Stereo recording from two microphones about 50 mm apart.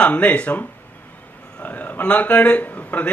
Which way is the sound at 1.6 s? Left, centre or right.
Left.